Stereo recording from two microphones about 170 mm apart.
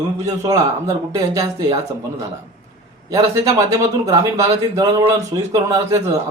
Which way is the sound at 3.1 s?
20° right (ahead or behind).